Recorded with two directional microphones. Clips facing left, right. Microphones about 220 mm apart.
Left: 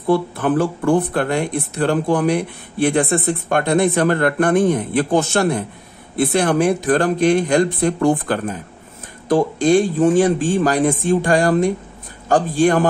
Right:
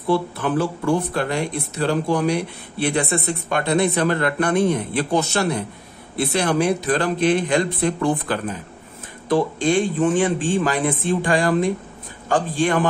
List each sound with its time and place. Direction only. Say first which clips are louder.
0.0 s speech: left 3 dB; 50° left (ahead or behind)